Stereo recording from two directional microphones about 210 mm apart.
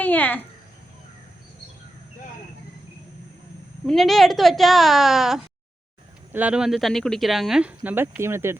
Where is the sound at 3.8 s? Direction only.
Centre (ahead or behind).